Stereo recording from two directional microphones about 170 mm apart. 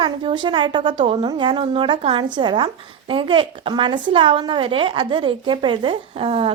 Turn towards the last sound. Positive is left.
turn(degrees=-30)  # may be behind; listen again after turning